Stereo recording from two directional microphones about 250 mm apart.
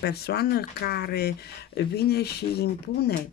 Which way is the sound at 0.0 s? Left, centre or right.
Left.